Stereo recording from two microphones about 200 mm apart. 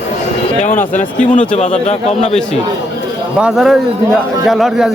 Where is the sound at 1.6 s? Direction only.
35° left (ahead or behind).